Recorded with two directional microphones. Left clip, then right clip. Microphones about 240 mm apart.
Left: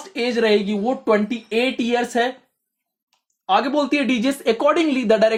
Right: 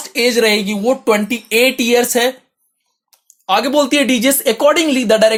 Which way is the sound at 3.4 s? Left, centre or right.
Right.